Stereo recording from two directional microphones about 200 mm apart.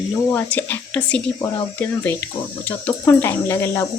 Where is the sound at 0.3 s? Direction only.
10° left (ahead or behind).